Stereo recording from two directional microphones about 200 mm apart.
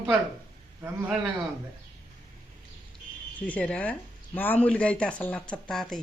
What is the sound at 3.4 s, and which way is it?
A woman's voice, 5° left (ahead or behind).